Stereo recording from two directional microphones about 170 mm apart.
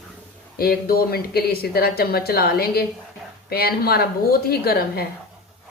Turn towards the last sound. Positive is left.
turn(degrees=65)  # may be behind; listen again after turning